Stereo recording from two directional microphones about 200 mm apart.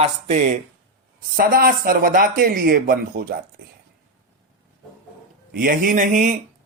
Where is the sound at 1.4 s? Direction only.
45° right (ahead or behind).